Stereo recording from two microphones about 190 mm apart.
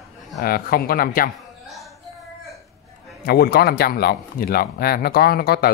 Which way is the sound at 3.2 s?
55° left (ahead or behind).